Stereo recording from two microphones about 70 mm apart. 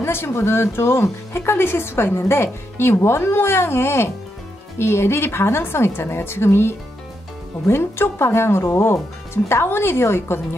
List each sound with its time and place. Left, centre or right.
0.0 s speech: left